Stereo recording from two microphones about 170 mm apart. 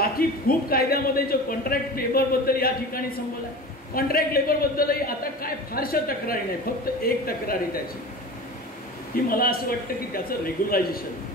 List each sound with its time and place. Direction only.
0.2 s a man's voice: 60° left (ahead or behind)
9.1 s a man's voice: 60° left (ahead or behind)